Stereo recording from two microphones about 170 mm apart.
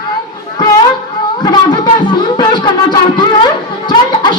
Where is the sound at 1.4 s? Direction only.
25° left (ahead or behind).